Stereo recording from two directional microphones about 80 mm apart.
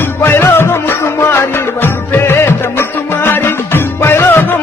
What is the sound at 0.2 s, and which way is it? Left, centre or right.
Music, left.